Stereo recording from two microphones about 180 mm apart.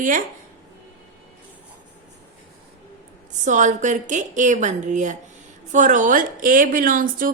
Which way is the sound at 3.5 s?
45° right (ahead or behind).